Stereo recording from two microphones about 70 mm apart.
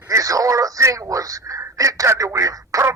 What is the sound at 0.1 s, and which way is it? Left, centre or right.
Speech, right.